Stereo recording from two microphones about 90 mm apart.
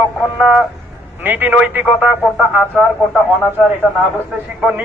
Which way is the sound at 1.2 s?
20° right (ahead or behind).